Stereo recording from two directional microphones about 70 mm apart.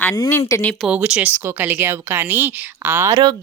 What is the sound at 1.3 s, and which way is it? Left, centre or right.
Speech, right.